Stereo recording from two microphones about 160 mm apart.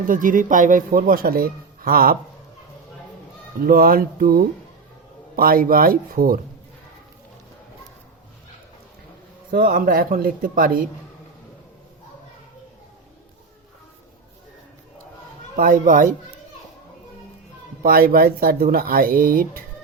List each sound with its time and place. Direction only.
0.0 s a man's voice: 60° right (ahead or behind)
3.6 s a man's voice: 65° right (ahead or behind)
9.5 s a man's voice: 65° right (ahead or behind)
15.5 s a man's voice: 60° right (ahead or behind)
17.8 s a man's voice: 65° right (ahead or behind)